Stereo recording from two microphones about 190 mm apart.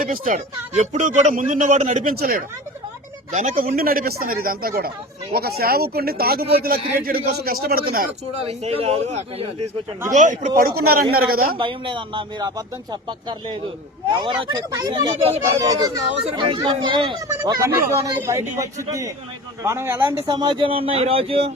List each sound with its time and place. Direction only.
0.0 s a man's voice: 45° right (ahead or behind)
8.4 s a man's voice: 30° right (ahead or behind)
10.8 s speech: 55° right (ahead or behind)
11.5 s a man's voice: 25° right (ahead or behind)